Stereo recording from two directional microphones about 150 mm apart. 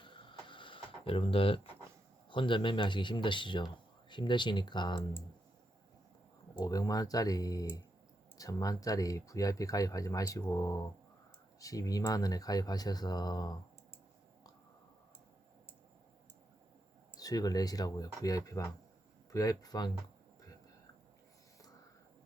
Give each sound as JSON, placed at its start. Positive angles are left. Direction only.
{"t": 0.0, "sound": "a sound", "side_deg": 35}
{"t": 2.3, "sound": "speech", "side_deg": 35}
{"t": 6.6, "sound": "speech", "side_deg": 25}
{"t": 17.2, "sound": "speech", "side_deg": 25}